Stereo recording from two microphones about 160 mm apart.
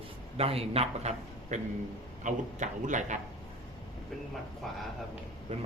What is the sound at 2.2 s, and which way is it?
Speech, 50° right (ahead or behind).